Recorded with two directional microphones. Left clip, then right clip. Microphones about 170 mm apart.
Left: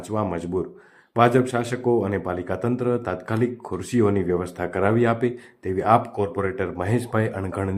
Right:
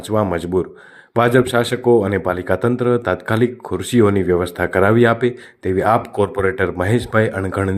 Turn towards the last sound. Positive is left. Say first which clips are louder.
# right 7 dB
turn(degrees=-25)  # may be behind; listen again after turning